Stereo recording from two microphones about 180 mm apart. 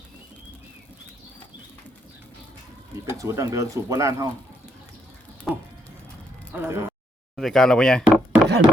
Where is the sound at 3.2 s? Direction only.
20° right (ahead or behind).